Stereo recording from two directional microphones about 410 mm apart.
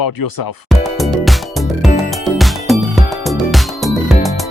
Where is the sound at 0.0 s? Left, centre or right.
Left.